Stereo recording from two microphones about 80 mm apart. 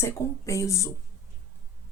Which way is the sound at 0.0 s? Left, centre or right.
Left.